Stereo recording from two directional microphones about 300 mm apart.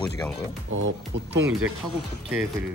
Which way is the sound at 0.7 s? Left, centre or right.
Right.